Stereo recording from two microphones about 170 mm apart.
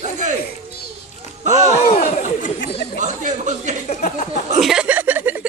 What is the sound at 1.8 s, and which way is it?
Speech, 55° left (ahead or behind).